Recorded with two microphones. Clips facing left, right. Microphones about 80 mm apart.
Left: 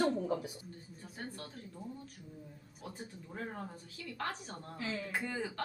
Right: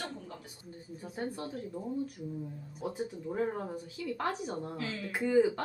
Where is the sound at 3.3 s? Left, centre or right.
Right.